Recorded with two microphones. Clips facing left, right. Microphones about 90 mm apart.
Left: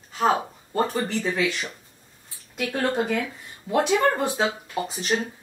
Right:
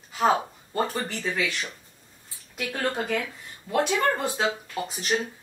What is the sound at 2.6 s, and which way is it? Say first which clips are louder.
Speech: left 4 dB; 20° left (ahead or behind).